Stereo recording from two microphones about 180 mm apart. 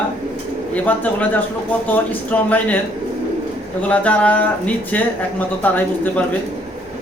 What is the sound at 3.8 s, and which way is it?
Speech, 10° left (ahead or behind).